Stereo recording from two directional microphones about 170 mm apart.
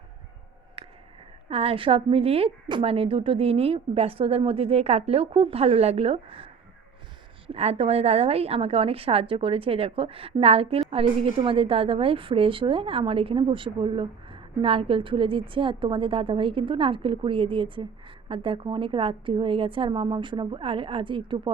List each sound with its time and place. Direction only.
1.5 s a woman's voice: 35° right (ahead or behind)